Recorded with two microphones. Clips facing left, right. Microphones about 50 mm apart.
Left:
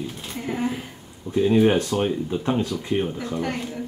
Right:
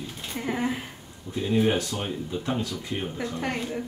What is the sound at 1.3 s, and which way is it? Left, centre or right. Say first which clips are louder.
Speech: left 6 dB; left.